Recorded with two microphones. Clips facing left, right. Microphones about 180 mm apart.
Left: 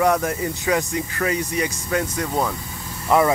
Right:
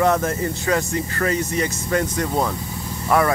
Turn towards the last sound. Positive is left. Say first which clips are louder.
# left 1 dB
turn(degrees=20)  # may be behind; listen again after turning